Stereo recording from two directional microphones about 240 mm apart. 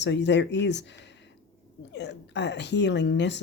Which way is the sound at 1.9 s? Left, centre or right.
Left.